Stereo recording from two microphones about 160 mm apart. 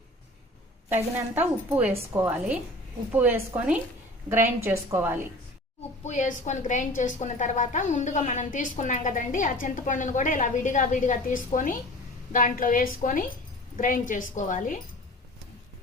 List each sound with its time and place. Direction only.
0.9 s a woman's voice: 10° right (ahead or behind)
6.1 s a woman's voice: 50° left (ahead or behind)